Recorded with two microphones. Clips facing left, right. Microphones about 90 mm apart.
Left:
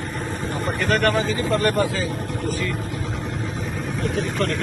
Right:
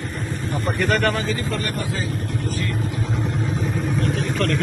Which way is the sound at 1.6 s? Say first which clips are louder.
Left 6 dB; 65° left (ahead or behind).